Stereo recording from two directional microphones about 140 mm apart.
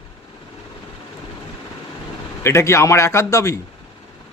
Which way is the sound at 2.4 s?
20° left (ahead or behind).